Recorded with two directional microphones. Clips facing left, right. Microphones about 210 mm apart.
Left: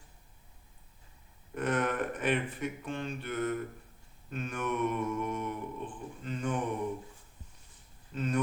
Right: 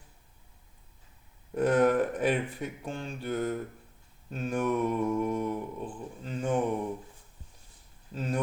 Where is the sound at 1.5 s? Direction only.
35° right (ahead or behind).